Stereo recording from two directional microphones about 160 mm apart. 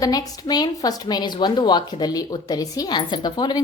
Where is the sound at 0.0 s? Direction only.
25° left (ahead or behind).